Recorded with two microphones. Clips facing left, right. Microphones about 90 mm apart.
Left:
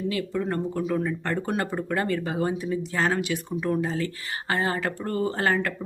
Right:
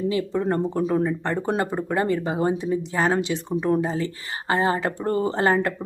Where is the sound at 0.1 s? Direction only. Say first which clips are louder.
Right 4 dB; 25° right (ahead or behind).